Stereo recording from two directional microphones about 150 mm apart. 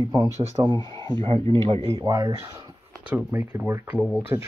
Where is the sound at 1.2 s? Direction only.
35° right (ahead or behind).